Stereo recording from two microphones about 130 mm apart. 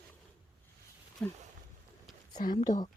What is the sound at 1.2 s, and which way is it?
Speech, 15° left (ahead or behind).